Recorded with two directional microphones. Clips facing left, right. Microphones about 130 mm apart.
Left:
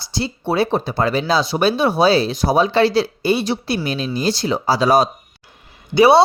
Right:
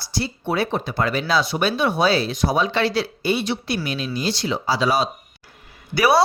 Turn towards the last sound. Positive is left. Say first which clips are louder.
# left 6 dB
turn(degrees=25)  # may be behind; listen again after turning